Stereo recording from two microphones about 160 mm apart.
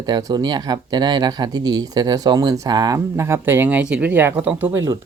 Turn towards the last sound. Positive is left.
turn(degrees=-15)  # may be behind; listen again after turning